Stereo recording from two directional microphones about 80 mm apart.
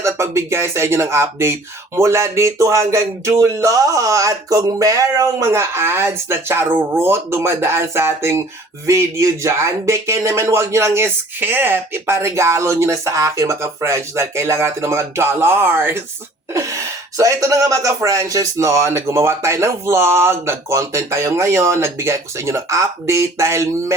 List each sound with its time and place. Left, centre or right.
0.0 s speech: right
16.6 s speech: right